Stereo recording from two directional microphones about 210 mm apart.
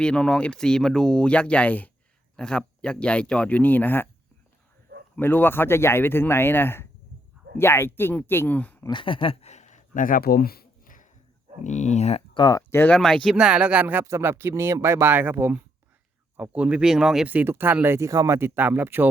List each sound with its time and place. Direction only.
0.0 s speech: 5° left (ahead or behind)
5.1 s speech: 10° left (ahead or behind)
8.9 s speech: 25° left (ahead or behind); by 19.0 s 10° right (ahead or behind)